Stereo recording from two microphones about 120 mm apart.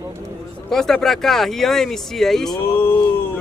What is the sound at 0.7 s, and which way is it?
Speech, 5° left (ahead or behind).